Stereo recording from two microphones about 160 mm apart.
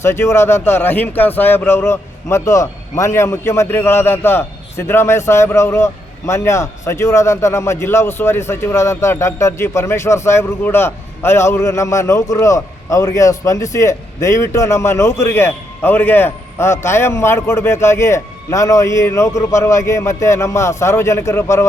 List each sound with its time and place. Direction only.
0.0 s speech: 15° left (ahead or behind)